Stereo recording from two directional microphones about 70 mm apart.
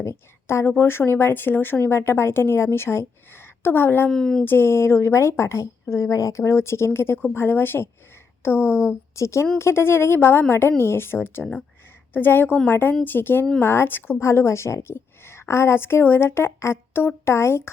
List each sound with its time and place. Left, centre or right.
0.0 s a woman's voice: left
4.1 s speech: centre
4.4 s a woman's voice: left
9.1 s a woman's voice: left
14.2 s a woman's voice: left